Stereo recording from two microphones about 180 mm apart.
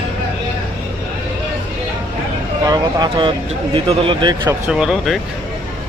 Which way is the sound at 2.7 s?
25° right (ahead or behind).